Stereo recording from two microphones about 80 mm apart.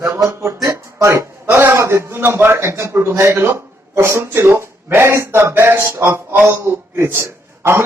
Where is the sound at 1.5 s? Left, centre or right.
Right.